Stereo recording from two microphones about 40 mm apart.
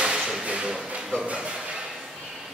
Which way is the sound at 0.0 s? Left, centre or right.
Right.